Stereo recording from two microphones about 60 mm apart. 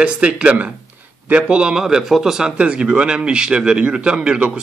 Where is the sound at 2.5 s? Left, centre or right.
Centre.